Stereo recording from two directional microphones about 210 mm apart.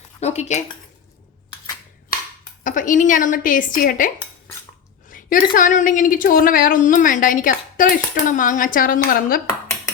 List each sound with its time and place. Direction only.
0.2 s speech: 30° left (ahead or behind)
2.6 s a woman's voice: 40° left (ahead or behind)
5.1 s a woman's voice: 40° left (ahead or behind)